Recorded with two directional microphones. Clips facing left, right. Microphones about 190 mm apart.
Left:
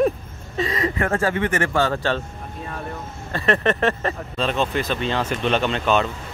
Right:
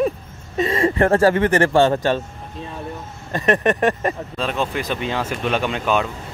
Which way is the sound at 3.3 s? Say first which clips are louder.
Right 2 dB; 15° right (ahead or behind).